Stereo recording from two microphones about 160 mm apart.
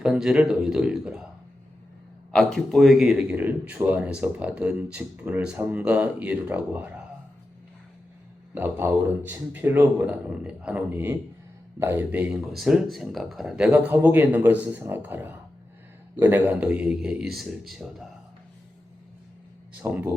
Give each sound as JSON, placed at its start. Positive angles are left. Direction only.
{"t": 0.0, "sound": "a man's voice", "side_deg": -5}
{"t": 2.3, "sound": "speech", "side_deg": 5}
{"t": 8.5, "sound": "a man's voice", "side_deg": -15}
{"t": 19.8, "sound": "speech", "side_deg": -10}